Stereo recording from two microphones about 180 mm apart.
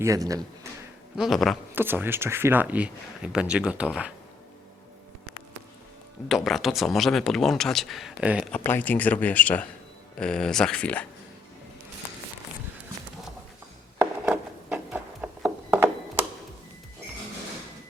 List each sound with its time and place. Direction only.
0.0 s speech: 20° right (ahead or behind)
1.1 s speech: centre (ahead or behind)
1.7 s speech: 10° right (ahead or behind)
6.2 s speech: centre (ahead or behind)
8.5 s speech: 10° left (ahead or behind)
14.0 s wood: 5° right (ahead or behind)